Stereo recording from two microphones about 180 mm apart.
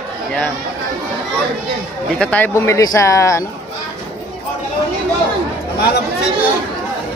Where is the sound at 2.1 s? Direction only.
5° left (ahead or behind).